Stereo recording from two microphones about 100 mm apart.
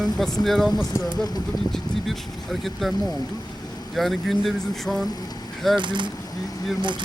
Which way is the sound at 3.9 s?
Centre (ahead or behind).